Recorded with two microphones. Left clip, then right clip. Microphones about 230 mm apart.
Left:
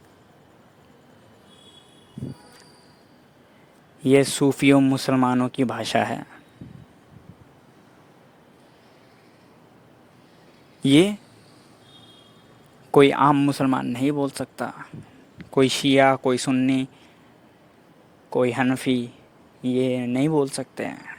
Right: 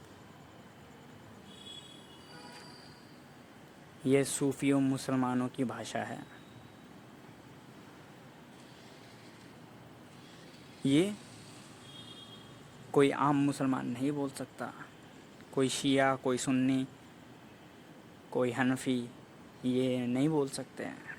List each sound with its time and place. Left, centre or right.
4.0 s speech: left
10.8 s speech: left
12.9 s speech: left
18.3 s speech: left